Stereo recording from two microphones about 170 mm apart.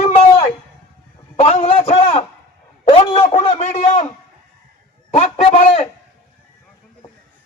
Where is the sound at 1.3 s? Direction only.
40° left (ahead or behind).